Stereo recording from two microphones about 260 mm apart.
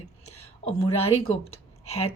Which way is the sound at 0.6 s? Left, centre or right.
Left.